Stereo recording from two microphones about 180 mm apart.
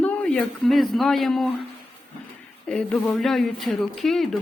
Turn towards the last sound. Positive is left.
turn(degrees=0)  # may be behind; listen again after turning